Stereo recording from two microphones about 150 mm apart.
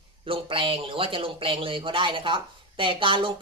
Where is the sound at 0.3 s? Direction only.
35° right (ahead or behind).